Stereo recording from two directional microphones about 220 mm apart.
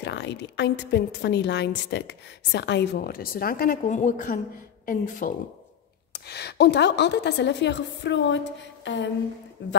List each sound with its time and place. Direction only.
0.0 s a woman's voice: 50° left (ahead or behind)
6.1 s a woman's voice: 50° left (ahead or behind)
8.8 s a sound: 55° left (ahead or behind)